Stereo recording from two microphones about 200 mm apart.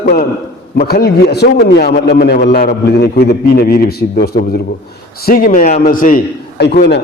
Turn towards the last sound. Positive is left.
turn(degrees=55)  # may be behind; listen again after turning